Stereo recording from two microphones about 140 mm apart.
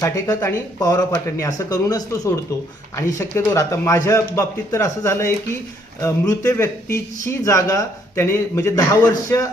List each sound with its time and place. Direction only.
0.0 s speech: 20° left (ahead or behind)